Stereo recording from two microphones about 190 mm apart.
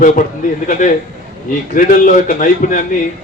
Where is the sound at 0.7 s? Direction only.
45° left (ahead or behind).